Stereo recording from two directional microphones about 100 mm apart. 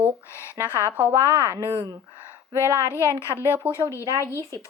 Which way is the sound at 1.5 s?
20° right (ahead or behind).